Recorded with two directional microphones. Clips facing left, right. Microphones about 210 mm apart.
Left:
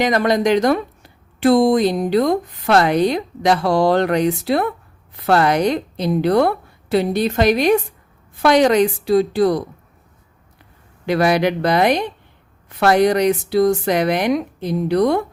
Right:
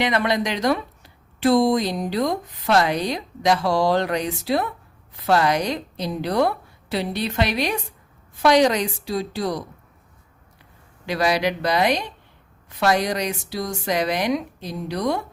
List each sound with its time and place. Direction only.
0.0 s speech: 40° left (ahead or behind)
11.0 s speech: 55° left (ahead or behind)